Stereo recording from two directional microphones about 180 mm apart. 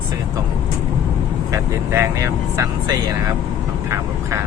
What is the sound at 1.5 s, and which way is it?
Speech, 15° right (ahead or behind).